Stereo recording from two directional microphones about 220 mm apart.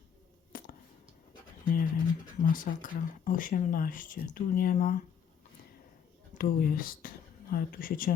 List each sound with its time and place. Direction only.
0.5 s a sound: 40° left (ahead or behind)
1.6 s speech: 40° left (ahead or behind)
6.4 s speech: 40° left (ahead or behind)